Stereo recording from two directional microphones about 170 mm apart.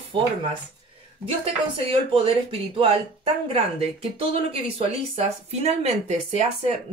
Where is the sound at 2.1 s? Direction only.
30° right (ahead or behind).